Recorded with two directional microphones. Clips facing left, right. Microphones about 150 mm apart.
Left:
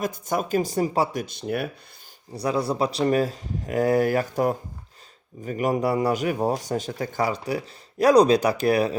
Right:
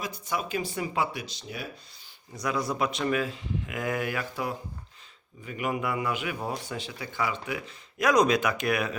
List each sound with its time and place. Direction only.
0.0 s speech: 45° left (ahead or behind)
2.3 s a man's voice: 30° left (ahead or behind)